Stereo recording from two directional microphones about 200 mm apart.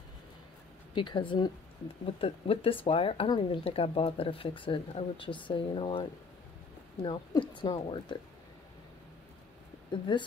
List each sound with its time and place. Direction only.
0.9 s speech: 25° left (ahead or behind)
10.1 s speech: 25° left (ahead or behind)